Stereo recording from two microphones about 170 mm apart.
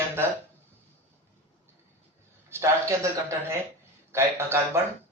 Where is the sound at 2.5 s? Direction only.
15° right (ahead or behind).